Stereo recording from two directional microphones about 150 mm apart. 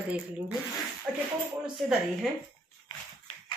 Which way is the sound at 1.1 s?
5° right (ahead or behind).